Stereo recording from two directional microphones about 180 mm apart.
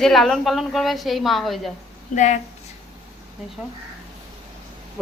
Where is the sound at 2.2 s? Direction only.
40° left (ahead or behind).